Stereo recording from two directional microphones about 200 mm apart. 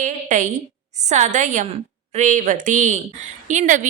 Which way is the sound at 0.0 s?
40° right (ahead or behind).